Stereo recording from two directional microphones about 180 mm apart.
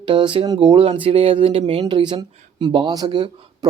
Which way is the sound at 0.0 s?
25° right (ahead or behind).